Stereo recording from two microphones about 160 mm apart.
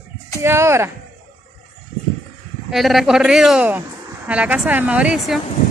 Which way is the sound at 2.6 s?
Centre (ahead or behind).